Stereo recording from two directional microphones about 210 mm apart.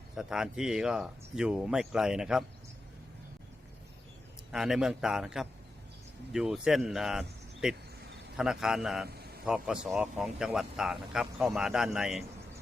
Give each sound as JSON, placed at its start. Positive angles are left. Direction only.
{"t": 0.2, "sound": "a man's voice", "side_deg": -5}
{"t": 4.5, "sound": "a man's voice", "side_deg": 0}
{"t": 9.0, "sound": "a sound", "side_deg": -50}
{"t": 9.5, "sound": "a man's voice", "side_deg": -5}